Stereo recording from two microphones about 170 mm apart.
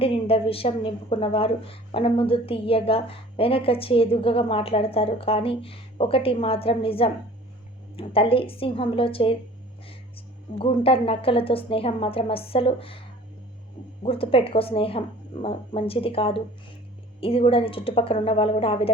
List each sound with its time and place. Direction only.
0.0 s a woman's voice: 35° left (ahead or behind)
10.6 s a woman's voice: 30° left (ahead or behind)
14.0 s a woman's voice: 35° left (ahead or behind)